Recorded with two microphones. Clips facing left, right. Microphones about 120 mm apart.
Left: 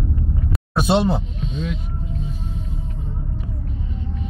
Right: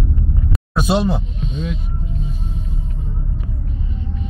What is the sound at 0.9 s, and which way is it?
Speech, 25° left (ahead or behind).